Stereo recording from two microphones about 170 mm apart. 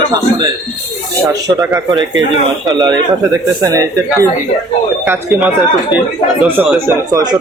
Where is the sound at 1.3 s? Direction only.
20° right (ahead or behind).